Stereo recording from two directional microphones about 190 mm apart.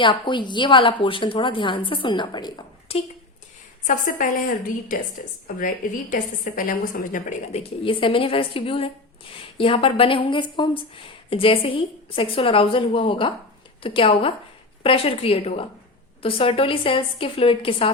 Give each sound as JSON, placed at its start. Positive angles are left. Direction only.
{"t": 0.0, "sound": "speech", "side_deg": 25}
{"t": 3.8, "sound": "a woman's voice", "side_deg": 45}